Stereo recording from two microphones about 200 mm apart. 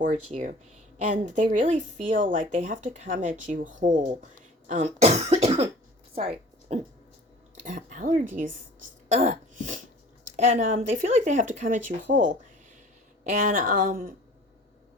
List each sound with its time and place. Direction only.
0.0 s speech: 40° right (ahead or behind)
6.1 s a sound: 30° right (ahead or behind)
7.6 s speech: 40° right (ahead or behind)
13.4 s speech: 45° right (ahead or behind)